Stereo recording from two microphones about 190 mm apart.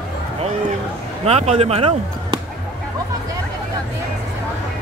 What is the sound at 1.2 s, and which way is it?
Speech, 35° right (ahead or behind).